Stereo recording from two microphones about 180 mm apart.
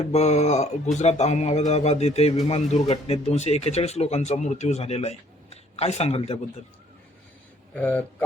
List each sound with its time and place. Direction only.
0.0 s speech: 35° left (ahead or behind)
7.7 s speech: 10° left (ahead or behind)